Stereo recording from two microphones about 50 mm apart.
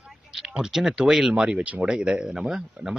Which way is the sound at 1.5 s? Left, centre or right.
Right.